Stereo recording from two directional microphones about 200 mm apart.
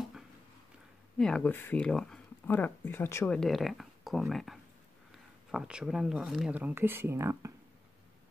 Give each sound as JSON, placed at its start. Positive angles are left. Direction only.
{"t": 1.1, "sound": "speech", "side_deg": 5}
{"t": 3.3, "sound": "speech", "side_deg": 0}